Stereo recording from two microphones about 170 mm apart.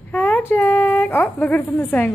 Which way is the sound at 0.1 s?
10° left (ahead or behind).